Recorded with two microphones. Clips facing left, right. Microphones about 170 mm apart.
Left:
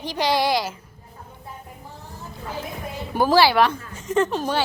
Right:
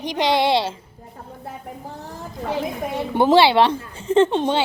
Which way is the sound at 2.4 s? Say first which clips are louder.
Right 8 dB; 70° right (ahead or behind).